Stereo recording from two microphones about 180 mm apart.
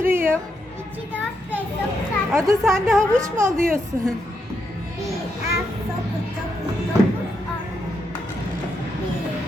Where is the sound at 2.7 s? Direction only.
5° left (ahead or behind).